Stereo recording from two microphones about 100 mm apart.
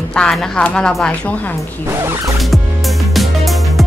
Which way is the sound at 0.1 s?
5° left (ahead or behind).